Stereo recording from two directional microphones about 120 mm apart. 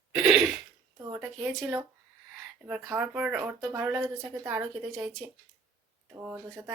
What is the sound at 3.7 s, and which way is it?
Speech, 20° right (ahead or behind).